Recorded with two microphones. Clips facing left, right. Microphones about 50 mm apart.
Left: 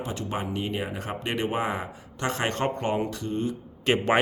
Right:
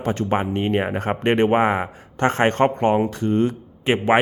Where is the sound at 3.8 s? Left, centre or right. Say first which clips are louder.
Right 5 dB; right.